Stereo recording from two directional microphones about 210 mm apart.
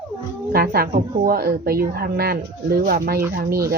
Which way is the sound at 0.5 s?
45° right (ahead or behind).